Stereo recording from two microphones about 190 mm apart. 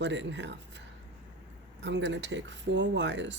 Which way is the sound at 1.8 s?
70° right (ahead or behind).